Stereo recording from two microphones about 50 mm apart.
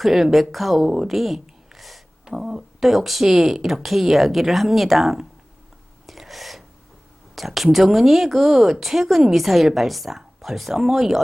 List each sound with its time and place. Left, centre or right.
0.0 s speech: centre
6.1 s a sound: centre
7.3 s speech: centre